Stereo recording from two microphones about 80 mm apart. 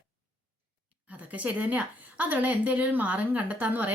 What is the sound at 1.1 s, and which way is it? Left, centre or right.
Speech, centre.